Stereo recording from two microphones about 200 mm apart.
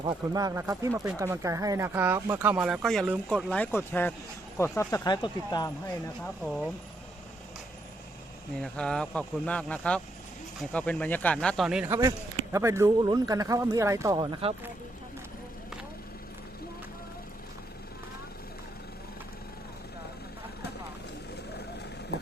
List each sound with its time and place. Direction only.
0.0 s speech: 20° right (ahead or behind); by 5.7 s 20° left (ahead or behind)
6.2 s speech: centre (ahead or behind)
8.6 s speech: 5° left (ahead or behind)
11.9 s speech: 15° right (ahead or behind)